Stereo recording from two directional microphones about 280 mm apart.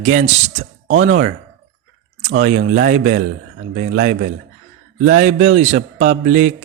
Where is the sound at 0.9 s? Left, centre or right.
Right.